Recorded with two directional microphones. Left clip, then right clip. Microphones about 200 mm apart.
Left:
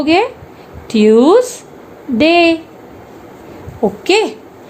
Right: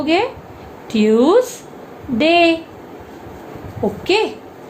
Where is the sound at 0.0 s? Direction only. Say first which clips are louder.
Left 4 dB; 45° left (ahead or behind).